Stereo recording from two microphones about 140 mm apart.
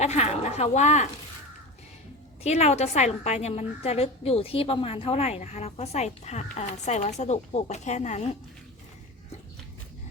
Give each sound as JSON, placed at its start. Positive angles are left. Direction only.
{"t": 0.0, "sound": "speech", "side_deg": 55}
{"t": 2.4, "sound": "a woman's voice", "side_deg": 50}